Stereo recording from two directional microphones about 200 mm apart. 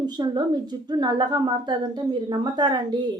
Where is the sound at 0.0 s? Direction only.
20° right (ahead or behind).